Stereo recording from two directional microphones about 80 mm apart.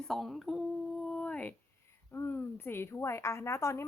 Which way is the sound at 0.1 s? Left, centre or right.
Centre.